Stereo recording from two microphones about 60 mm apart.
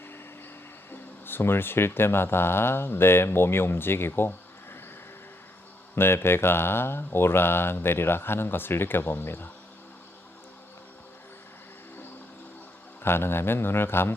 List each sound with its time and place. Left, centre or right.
0.9 s speech: left
6.0 s speech: left
13.0 s speech: left